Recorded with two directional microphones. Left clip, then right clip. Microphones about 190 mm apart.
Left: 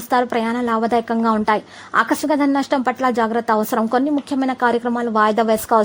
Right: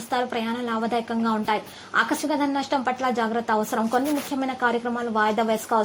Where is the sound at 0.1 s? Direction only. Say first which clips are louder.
Left 8 dB; 40° left (ahead or behind).